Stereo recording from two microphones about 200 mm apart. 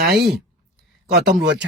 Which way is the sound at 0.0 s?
50° right (ahead or behind).